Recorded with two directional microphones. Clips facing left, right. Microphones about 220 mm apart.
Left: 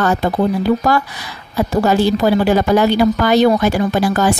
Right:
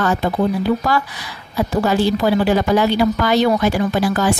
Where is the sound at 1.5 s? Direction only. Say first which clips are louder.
Left 3 dB; 45° left (ahead or behind).